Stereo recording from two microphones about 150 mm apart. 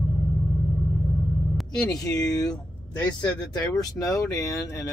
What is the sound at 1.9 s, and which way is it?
Speech, 25° left (ahead or behind).